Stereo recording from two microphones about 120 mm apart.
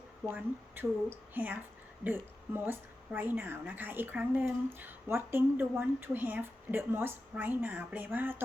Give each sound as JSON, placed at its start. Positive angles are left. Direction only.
{"t": 0.3, "sound": "a woman's voice", "side_deg": -20}